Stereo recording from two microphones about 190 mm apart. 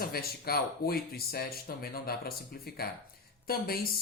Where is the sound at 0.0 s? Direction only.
55° left (ahead or behind).